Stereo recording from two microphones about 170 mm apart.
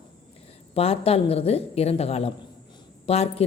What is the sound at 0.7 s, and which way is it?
A woman's voice, 35° left (ahead or behind).